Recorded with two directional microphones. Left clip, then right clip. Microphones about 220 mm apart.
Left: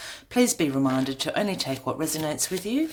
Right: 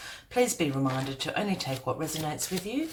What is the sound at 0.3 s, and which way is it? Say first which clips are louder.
Speech: left 3 dB; 45° left (ahead or behind).